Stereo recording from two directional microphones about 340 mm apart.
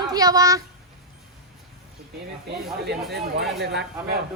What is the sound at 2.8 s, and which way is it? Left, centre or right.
Speech, right.